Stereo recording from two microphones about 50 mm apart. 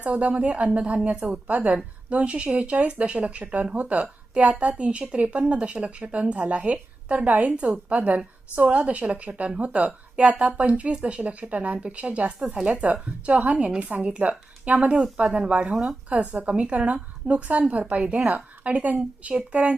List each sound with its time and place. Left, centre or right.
0.0 s a woman's voice: right
12.4 s speech: centre
12.6 s a woman's voice: right
15.0 s a woman's voice: centre